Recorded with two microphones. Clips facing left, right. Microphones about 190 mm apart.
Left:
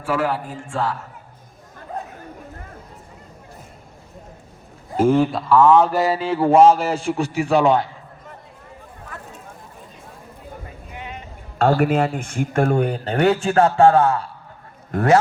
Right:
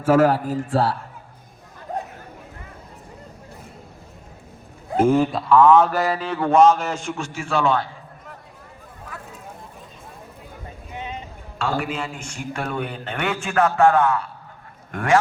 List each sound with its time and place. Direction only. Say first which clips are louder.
0.0 s a man's voice: right 6 dB; 45° right (ahead or behind)
5.0 s speech: left 2 dB; centre (ahead or behind)
5.9 s speech: left 3 dB; 25° left (ahead or behind)
7.5 s a man's voice: left 4 dB; 20° left (ahead or behind)
10.9 s a sound: right 3 dB; 20° right (ahead or behind)
11.5 s speech: left 8 dB; 55° left (ahead or behind); by 15.2 s 35° left (ahead or behind)